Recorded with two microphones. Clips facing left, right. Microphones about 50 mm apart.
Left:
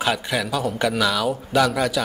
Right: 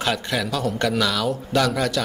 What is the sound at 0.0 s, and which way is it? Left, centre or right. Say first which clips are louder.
A man's voice: left 1 dB; centre.